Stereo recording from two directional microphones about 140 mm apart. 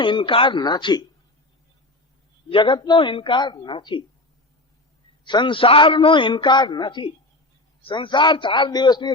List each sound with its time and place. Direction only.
0.0 s a man's voice: 35° left (ahead or behind)
2.5 s a man's voice: 35° left (ahead or behind)
5.2 s a man's voice: 35° left (ahead or behind)